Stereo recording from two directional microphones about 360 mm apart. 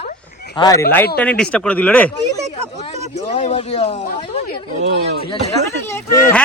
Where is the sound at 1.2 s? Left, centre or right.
Centre.